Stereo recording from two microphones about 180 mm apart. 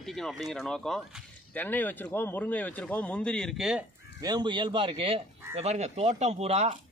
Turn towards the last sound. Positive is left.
turn(degrees=-35)  # may be behind; listen again after turning